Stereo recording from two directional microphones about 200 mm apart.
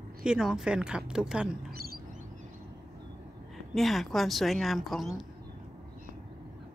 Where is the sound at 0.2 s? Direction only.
5° right (ahead or behind).